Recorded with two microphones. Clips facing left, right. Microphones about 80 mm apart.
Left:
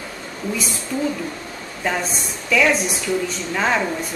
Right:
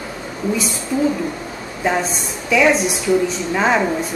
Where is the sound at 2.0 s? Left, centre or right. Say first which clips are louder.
Right 4 dB; centre.